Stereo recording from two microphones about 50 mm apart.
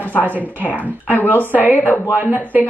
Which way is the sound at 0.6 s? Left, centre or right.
Right.